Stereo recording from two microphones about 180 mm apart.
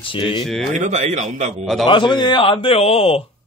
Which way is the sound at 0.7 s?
40° right (ahead or behind).